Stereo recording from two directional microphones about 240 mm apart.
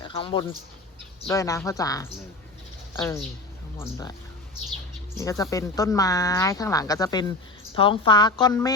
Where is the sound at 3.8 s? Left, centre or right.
Centre.